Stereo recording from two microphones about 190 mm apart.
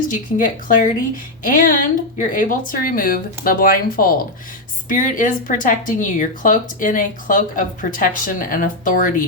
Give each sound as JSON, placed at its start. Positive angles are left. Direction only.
{"t": 0.1, "sound": "speech", "side_deg": 45}